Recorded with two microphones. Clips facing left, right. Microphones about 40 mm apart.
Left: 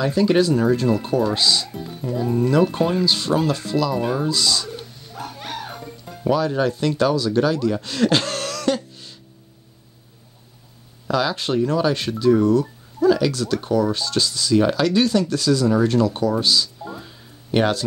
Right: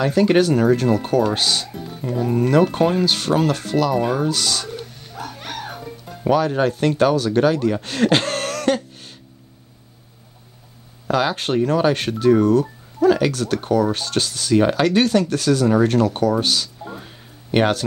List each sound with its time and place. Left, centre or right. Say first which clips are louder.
0.0 s speech: right 2 dB; right
6.2 s speech: right 2 dB; right
11.1 s speech: right 1 dB; right